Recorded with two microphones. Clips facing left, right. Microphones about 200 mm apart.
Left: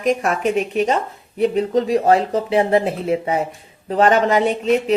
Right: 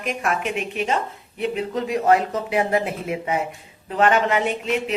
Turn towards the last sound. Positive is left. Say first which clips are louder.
# left 7 dB
turn(degrees=35)  # may be behind; listen again after turning